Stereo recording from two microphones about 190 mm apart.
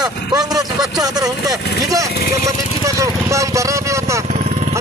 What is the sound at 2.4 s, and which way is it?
Vehicle, 15° right (ahead or behind).